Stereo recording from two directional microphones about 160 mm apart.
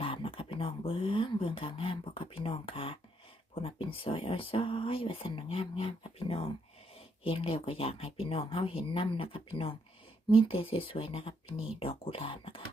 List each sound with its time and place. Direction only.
0.0 s speech: 35° left (ahead or behind)